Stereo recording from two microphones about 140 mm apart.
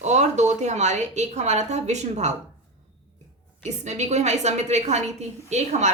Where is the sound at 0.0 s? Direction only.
55° right (ahead or behind).